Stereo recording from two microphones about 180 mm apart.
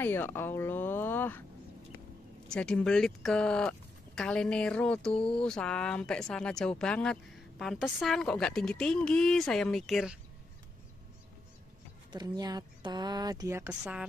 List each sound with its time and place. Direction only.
0.0 s speech: 10° left (ahead or behind)
2.5 s speech: 5° left (ahead or behind)
12.1 s speech: 25° right (ahead or behind)